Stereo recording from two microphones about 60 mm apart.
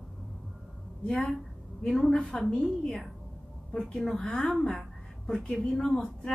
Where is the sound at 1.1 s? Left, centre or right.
Centre.